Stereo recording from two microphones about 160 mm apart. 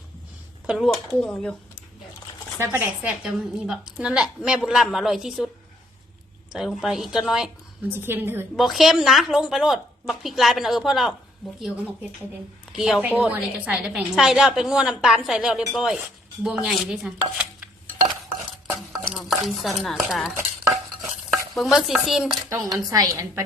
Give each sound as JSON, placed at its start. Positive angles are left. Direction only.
{"t": 0.7, "sound": "a woman's voice", "side_deg": 0}
{"t": 2.6, "sound": "a woman's voice", "side_deg": -10}
{"t": 6.5, "sound": "a woman's voice", "side_deg": 0}
{"t": 7.9, "sound": "a woman's voice", "side_deg": -15}
{"t": 8.5, "sound": "a woman's voice", "side_deg": 0}
{"t": 12.7, "sound": "a woman's voice", "side_deg": 0}
{"t": 19.1, "sound": "stir", "side_deg": 0}
{"t": 19.5, "sound": "a woman's voice", "side_deg": 0}
{"t": 21.5, "sound": "a woman's voice", "side_deg": 0}
{"t": 22.4, "sound": "a woman's voice", "side_deg": -20}